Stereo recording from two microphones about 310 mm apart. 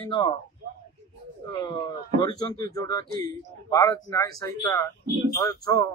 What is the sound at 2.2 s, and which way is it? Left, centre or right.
Speech, centre.